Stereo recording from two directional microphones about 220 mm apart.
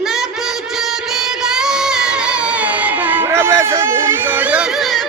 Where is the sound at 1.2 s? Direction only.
Centre (ahead or behind).